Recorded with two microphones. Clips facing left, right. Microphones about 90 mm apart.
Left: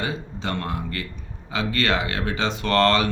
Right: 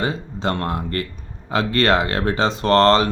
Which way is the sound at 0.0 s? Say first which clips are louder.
Right 5 dB; 40° right (ahead or behind).